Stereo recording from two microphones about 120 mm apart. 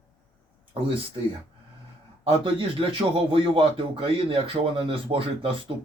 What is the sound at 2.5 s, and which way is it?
Speech, 45° right (ahead or behind).